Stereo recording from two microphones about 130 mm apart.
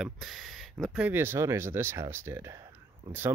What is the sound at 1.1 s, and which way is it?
Speech, 20° right (ahead or behind).